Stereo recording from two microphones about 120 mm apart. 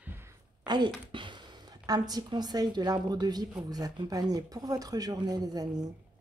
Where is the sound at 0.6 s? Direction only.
35° right (ahead or behind).